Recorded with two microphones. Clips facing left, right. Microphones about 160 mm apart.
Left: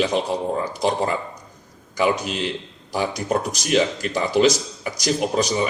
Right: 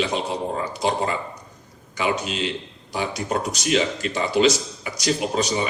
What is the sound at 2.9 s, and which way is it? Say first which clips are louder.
Speech: left 3 dB; 45° left (ahead or behind).